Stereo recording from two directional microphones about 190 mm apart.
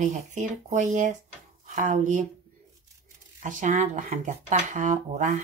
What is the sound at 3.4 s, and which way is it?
Speech, 40° right (ahead or behind).